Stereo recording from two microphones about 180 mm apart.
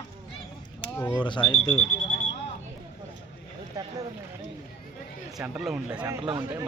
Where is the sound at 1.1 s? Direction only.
25° left (ahead or behind).